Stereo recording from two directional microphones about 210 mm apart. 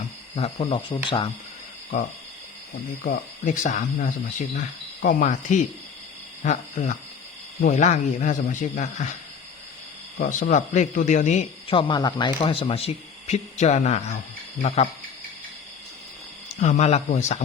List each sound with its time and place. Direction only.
0.3 s speech: 30° left (ahead or behind)
3.1 s a man's voice: 35° left (ahead or behind)
10.2 s a man's voice: 40° left (ahead or behind)
16.6 s a man's voice: 35° left (ahead or behind)